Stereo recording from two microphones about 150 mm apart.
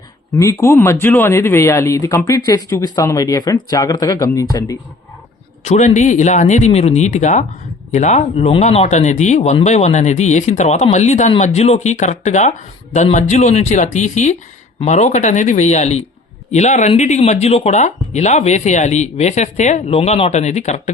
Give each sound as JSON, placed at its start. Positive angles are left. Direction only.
{"t": 0.3, "sound": "speech", "side_deg": 20}
{"t": 5.6, "sound": "speech", "side_deg": 50}